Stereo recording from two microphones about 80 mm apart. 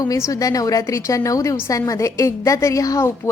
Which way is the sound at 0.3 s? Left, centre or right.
Left.